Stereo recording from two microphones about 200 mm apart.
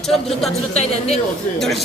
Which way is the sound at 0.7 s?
30° left (ahead or behind).